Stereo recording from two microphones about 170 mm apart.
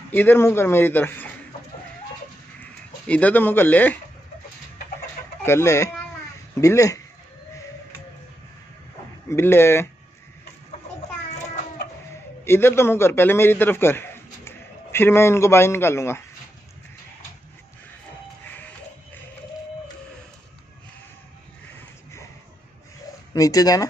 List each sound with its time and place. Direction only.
0.1 s a man's voice: 10° left (ahead or behind)
2.6 s speech: 10° left (ahead or behind)
5.4 s a man's voice: 15° left (ahead or behind)
9.3 s a man's voice: 15° left (ahead or behind)
12.4 s a man's voice: 15° left (ahead or behind)
23.3 s speech: 20° left (ahead or behind)